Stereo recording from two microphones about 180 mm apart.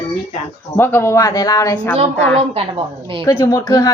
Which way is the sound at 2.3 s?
35° right (ahead or behind).